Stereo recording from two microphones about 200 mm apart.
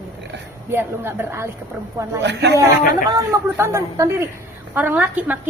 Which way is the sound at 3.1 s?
15° right (ahead or behind).